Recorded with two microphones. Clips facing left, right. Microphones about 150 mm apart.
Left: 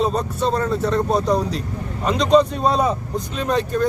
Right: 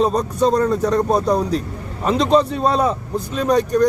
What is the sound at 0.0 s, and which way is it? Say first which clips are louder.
Speech: right 4 dB; 35° right (ahead or behind).